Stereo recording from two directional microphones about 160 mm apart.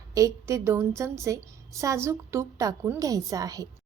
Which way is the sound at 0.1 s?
20° right (ahead or behind).